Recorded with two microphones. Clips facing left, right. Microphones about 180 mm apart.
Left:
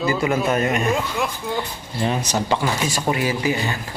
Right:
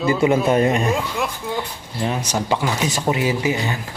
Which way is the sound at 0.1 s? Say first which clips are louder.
Right 6 dB; 25° right (ahead or behind).